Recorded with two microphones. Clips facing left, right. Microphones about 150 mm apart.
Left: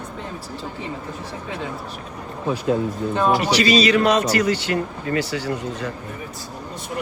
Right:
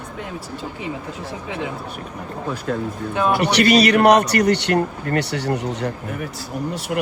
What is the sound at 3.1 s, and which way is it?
Speech, 5° right (ahead or behind).